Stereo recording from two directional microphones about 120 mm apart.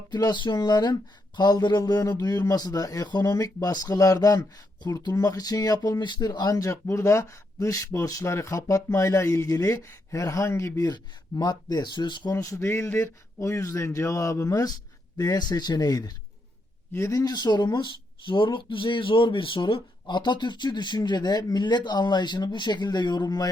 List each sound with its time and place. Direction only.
0.1 s a man's voice: 35° left (ahead or behind)
12.4 s a man's voice: 25° left (ahead or behind)